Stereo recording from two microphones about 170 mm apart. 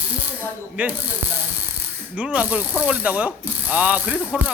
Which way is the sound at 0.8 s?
10° right (ahead or behind).